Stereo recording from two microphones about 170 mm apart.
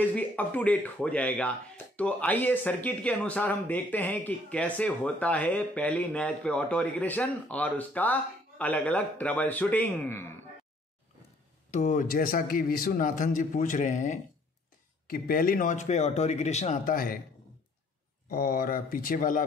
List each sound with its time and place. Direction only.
0.0 s speech: 10° left (ahead or behind)
11.7 s a man's voice: 45° left (ahead or behind)
15.0 s a man's voice: 60° left (ahead or behind); by 16.8 s 40° left (ahead or behind)
16.8 s speech: 60° left (ahead or behind)
18.3 s speech: 60° left (ahead or behind)